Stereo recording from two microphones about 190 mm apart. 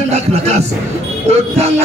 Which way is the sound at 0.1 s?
35° right (ahead or behind).